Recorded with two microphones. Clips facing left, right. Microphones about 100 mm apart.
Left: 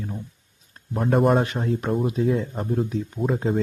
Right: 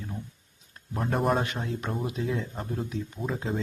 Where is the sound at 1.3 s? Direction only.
35° left (ahead or behind).